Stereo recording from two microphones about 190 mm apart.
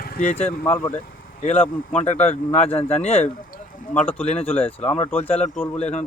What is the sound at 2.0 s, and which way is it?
Speech, 35° left (ahead or behind).